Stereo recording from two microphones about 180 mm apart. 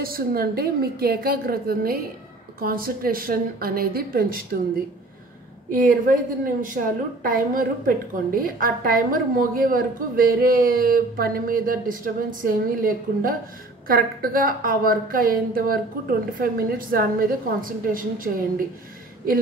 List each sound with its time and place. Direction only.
0.0 s a woman's voice: 55° right (ahead or behind)